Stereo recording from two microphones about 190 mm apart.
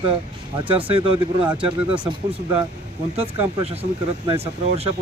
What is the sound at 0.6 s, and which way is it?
Speech, 25° right (ahead or behind).